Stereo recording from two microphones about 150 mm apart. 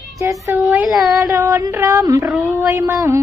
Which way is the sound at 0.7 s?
10° right (ahead or behind).